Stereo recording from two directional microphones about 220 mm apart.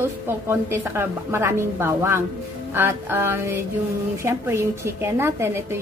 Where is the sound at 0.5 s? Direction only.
10° right (ahead or behind).